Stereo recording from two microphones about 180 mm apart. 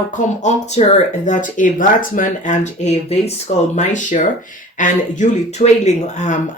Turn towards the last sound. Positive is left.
turn(degrees=40)  # may be behind; listen again after turning